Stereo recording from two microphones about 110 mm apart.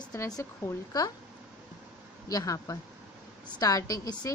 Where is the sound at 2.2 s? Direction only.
35° left (ahead or behind).